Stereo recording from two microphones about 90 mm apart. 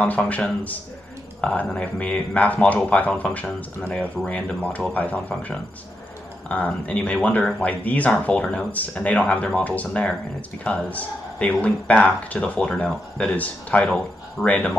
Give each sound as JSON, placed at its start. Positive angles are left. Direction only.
{"t": 0.0, "sound": "speech", "side_deg": 15}